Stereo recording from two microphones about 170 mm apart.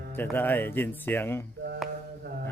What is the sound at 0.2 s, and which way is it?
Speech, 10° left (ahead or behind).